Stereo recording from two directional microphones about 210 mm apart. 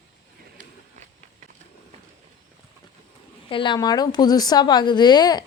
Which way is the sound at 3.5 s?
25° left (ahead or behind).